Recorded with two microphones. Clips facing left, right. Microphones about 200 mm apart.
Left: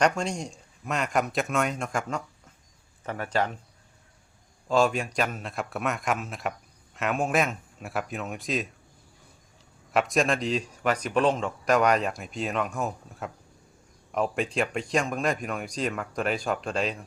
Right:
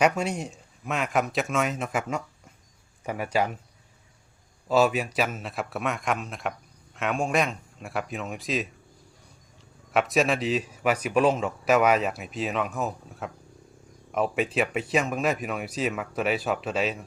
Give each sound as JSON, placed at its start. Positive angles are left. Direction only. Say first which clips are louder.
{"t": 0.2, "sound": "speech", "louder": "right 2 dB", "side_deg": -5}
{"t": 4.7, "sound": "speech", "louder": "right 1 dB", "side_deg": -5}
{"t": 9.9, "sound": "speech", "louder": "right 1 dB", "side_deg": 0}